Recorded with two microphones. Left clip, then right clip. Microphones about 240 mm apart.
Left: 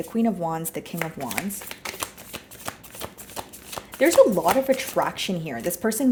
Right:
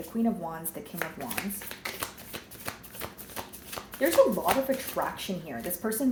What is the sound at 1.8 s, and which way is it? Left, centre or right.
Shuffling cards, left.